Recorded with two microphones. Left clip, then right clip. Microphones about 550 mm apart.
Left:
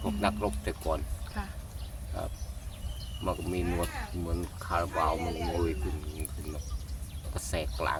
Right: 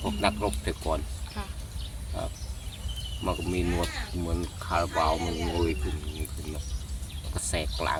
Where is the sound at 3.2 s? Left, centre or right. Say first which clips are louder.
Right 2 dB; left.